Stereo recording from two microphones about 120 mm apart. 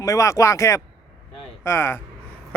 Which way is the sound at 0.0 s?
30° left (ahead or behind).